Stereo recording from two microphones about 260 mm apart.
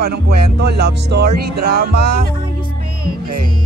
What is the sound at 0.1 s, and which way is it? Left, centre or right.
Music, right.